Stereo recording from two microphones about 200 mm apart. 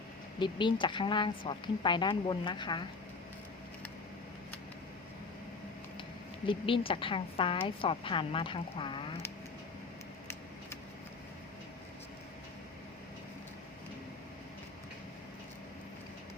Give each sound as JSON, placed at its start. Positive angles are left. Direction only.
{"t": 0.3, "sound": "a woman's voice", "side_deg": 25}
{"t": 6.4, "sound": "a woman's voice", "side_deg": 25}